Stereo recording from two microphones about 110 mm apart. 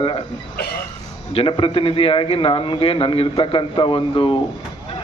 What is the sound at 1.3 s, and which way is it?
A man's voice, 55° left (ahead or behind).